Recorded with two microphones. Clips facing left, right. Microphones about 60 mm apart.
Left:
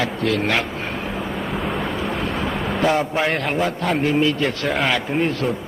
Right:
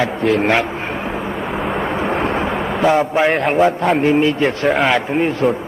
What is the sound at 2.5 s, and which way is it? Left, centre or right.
A man's voice, centre.